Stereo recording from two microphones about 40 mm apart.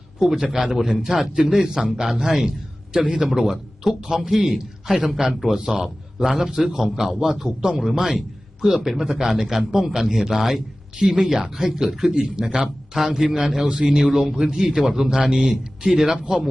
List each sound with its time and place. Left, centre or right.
0.2 s a man's voice: centre
0.4 s speech: right
1.0 s a man's voice: centre
3.0 s speech: right
3.2 s a man's voice: centre
15.9 s speech: centre